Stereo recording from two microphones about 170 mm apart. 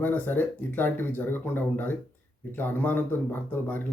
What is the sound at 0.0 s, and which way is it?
Speech, 10° left (ahead or behind).